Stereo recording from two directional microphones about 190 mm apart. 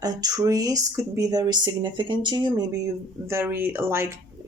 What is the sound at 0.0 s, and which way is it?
Speech, 20° right (ahead or behind).